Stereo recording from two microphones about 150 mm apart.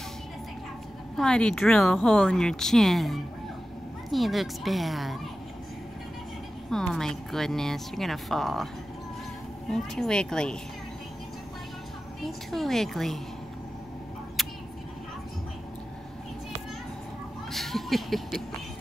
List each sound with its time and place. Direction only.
1.1 s speech: 5° left (ahead or behind)
6.7 s speech: 5° left (ahead or behind)
9.7 s speech: 5° left (ahead or behind)
12.3 s speech: centre (ahead or behind)
17.5 s a sound: centre (ahead or behind)